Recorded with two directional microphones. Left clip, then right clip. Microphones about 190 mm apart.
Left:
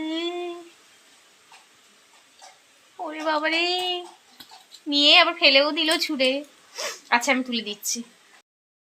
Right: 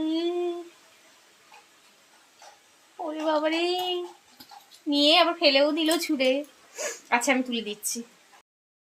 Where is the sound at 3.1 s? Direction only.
15° left (ahead or behind).